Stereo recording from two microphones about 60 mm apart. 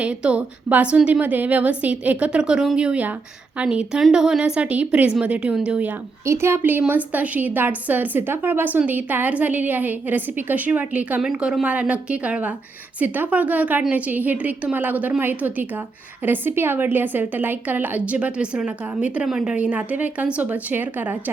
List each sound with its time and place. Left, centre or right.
0.0 s a woman's voice: centre
1.2 s a woman's voice: right
6.2 s a woman's voice: right
11.2 s a woman's voice: centre
19.3 s a woman's voice: centre
19.5 s a woman's voice: right